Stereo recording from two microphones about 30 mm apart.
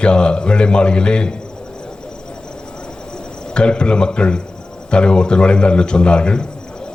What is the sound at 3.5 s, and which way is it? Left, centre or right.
Speech, left.